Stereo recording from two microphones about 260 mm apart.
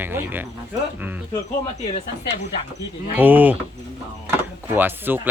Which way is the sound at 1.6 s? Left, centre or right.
Left.